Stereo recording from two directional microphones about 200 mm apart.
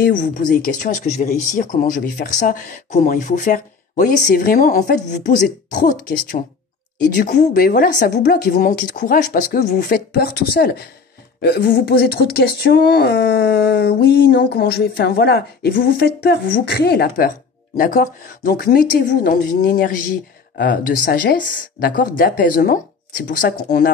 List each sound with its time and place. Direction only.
0.0 s speech: 40° left (ahead or behind)